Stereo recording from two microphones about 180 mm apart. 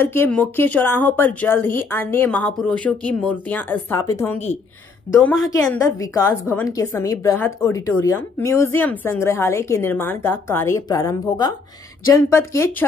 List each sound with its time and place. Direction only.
0.0 s a woman's voice: 10° left (ahead or behind)
5.7 s a woman's voice: 20° left (ahead or behind)